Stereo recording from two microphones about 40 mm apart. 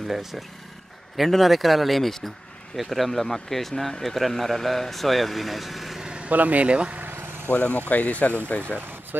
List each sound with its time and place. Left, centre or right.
0.1 s speech: centre
6.0 s vehicle: right
6.3 s speech: right
6.6 s speech: right
7.0 s vehicle: right
7.5 s speech: left